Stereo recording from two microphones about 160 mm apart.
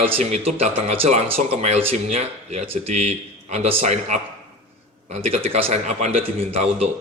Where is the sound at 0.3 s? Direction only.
45° right (ahead or behind).